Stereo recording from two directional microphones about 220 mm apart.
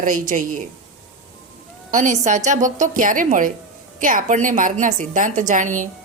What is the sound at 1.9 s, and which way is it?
A woman's voice, 35° right (ahead or behind).